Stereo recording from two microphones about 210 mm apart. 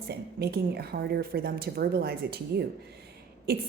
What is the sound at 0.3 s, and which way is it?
A woman's voice, 50° right (ahead or behind).